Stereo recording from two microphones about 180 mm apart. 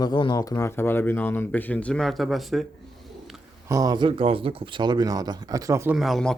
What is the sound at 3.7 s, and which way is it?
Speech, 20° right (ahead or behind).